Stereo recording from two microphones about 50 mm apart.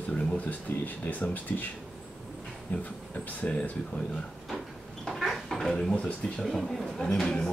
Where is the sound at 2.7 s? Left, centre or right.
Left.